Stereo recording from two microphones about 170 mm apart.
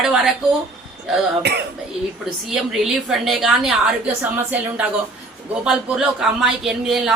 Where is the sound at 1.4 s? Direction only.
75° right (ahead or behind).